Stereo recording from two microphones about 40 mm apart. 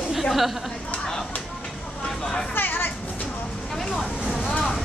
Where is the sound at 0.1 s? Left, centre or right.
Centre.